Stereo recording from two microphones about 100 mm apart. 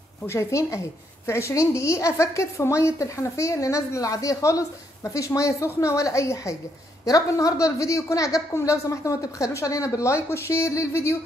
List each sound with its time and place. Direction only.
0.3 s a woman's voice: 30° left (ahead or behind)